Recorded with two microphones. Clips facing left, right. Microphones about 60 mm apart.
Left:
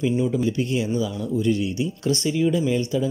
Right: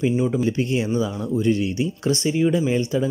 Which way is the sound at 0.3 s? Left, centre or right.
Right.